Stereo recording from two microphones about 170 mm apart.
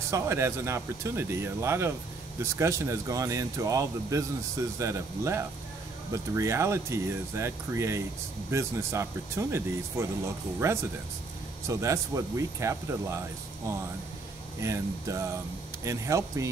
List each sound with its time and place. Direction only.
0.1 s speech: 15° right (ahead or behind)
14.6 s speech: 15° right (ahead or behind)